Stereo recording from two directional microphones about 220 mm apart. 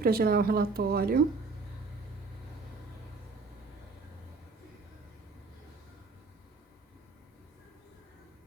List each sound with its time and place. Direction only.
0.0 s speech: 45° right (ahead or behind)